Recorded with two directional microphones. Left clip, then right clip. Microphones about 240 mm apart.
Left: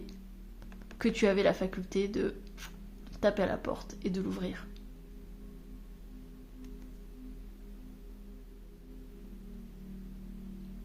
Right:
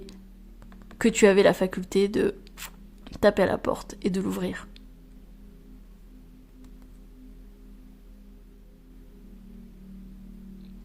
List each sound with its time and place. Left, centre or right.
0.9 s speech: right